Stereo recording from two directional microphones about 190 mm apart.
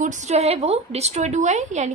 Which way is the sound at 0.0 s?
40° right (ahead or behind).